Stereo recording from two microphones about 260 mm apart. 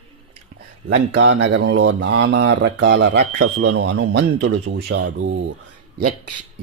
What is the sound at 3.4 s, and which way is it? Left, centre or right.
Speech, right.